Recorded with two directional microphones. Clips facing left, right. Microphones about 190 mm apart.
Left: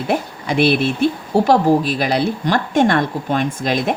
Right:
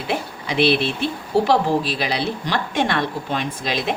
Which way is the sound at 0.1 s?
50° left (ahead or behind).